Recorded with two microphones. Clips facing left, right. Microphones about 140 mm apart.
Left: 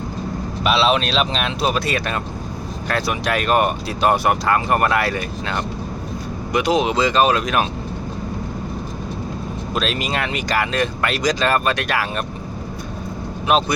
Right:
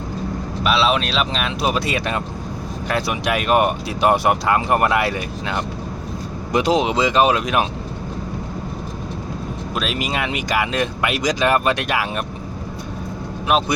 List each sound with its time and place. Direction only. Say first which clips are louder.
0.6 s speech: left 1 dB; centre (ahead or behind)
1.6 s speech: even; 20° right (ahead or behind)
6.5 s speech: right 1 dB; 30° right (ahead or behind)
9.7 s speech: left 1 dB; 10° right (ahead or behind)